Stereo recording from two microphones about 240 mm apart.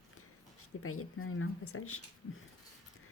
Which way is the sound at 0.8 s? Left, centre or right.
Left.